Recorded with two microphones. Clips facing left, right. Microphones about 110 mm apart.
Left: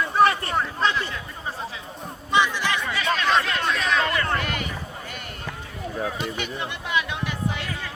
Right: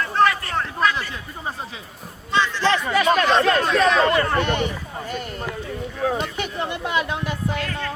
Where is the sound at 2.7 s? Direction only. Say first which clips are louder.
Right 6 dB; 50° right (ahead or behind); by 4.6 s 30° right (ahead or behind).